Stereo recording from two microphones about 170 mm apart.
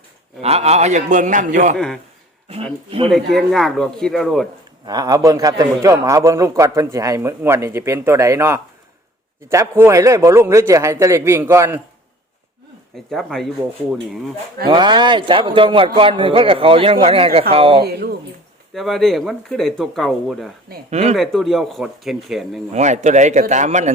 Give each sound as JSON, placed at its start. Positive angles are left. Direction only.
{"t": 0.4, "sound": "a man's voice", "side_deg": -40}
{"t": 1.7, "sound": "speech", "side_deg": 0}
{"t": 3.1, "sound": "speech", "side_deg": 0}
{"t": 4.9, "sound": "a man's voice", "side_deg": -25}
{"t": 13.1, "sound": "speech", "side_deg": 0}
{"t": 14.7, "sound": "speech", "side_deg": -25}
{"t": 17.8, "sound": "speech", "side_deg": -70}
{"t": 18.7, "sound": "speech", "side_deg": 0}
{"t": 20.9, "sound": "speech", "side_deg": -40}
{"t": 21.2, "sound": "speech", "side_deg": 0}
{"t": 22.7, "sound": "a man's voice", "side_deg": -45}